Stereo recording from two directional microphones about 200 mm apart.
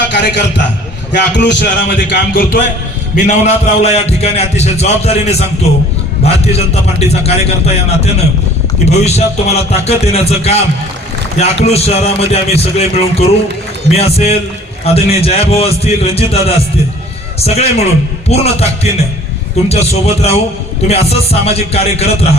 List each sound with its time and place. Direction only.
0.2 s a man's voice: 60° left (ahead or behind)
2.1 s speech: 50° left (ahead or behind)
3.2 s a man's voice: 35° left (ahead or behind)